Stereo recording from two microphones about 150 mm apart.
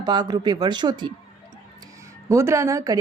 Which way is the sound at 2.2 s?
20° right (ahead or behind).